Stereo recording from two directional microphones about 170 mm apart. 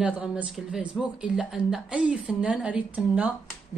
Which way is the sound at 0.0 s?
5° right (ahead or behind).